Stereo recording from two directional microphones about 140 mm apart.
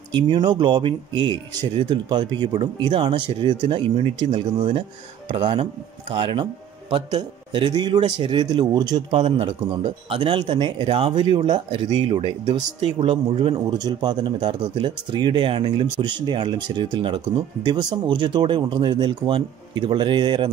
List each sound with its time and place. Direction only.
0.1 s speech: 35° right (ahead or behind)
13.7 s speech: 30° right (ahead or behind)